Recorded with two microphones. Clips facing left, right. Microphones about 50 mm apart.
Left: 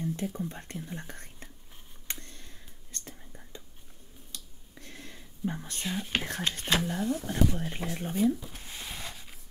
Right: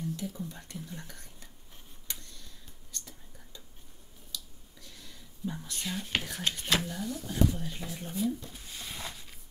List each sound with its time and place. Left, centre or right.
0.0 s speech: left
2.0 s whispering: left
4.3 s finger snapping: left
5.9 s speech: centre
6.1 s speech: left
6.6 s speech: left
6.9 s speech: left
8.9 s a sound: centre